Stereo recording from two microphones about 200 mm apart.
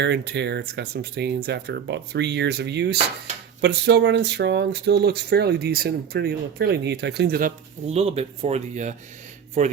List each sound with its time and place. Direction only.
0.0 s speech: 60° right (ahead or behind)
7.9 s speech: 30° right (ahead or behind)